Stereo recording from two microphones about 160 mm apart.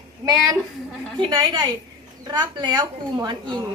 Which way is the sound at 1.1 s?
30° right (ahead or behind).